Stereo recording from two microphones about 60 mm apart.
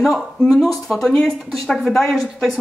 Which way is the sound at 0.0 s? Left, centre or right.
Centre.